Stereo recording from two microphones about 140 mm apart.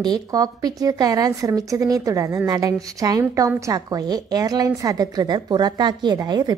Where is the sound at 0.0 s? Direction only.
30° right (ahead or behind).